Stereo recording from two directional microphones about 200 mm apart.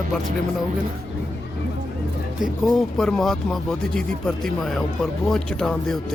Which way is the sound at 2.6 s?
Centre (ahead or behind).